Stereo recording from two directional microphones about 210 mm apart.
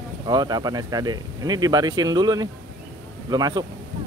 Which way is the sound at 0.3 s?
20° right (ahead or behind).